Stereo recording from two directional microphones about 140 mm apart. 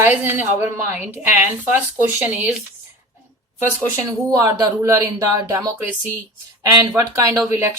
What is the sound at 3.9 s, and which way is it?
Speech, 25° right (ahead or behind).